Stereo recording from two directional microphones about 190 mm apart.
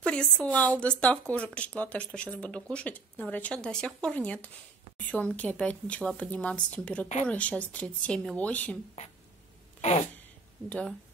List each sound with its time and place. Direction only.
0.0 s speech: 5° left (ahead or behind)
9.8 s a sound: 35° left (ahead or behind)
10.7 s speech: 5° left (ahead or behind)